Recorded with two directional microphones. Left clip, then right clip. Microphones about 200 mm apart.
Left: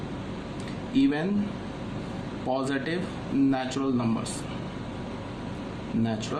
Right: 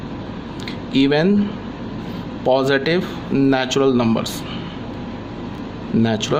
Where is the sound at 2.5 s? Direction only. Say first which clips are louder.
Right 12 dB; 45° right (ahead or behind).